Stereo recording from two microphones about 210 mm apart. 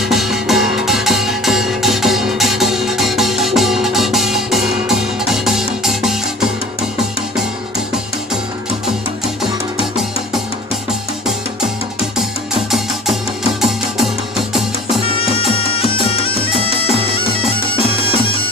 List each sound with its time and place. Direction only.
0.0 s music: centre (ahead or behind)
12.2 s music: centre (ahead or behind)
15.0 s music: 25° left (ahead or behind)